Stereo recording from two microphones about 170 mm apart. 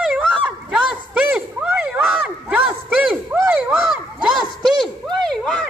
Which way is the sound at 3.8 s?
Centre (ahead or behind).